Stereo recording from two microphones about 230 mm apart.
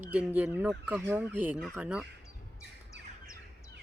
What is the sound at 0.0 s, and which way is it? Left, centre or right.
Speech, centre.